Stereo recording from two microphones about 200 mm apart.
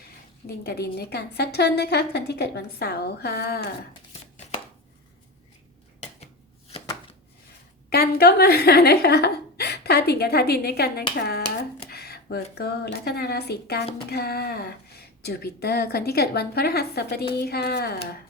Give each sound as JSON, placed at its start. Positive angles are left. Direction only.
{"t": 0.0, "sound": "a woman's voice", "side_deg": 50}
{"t": 4.1, "sound": "chopping", "side_deg": 30}
{"t": 7.9, "sound": "a woman's voice", "side_deg": 50}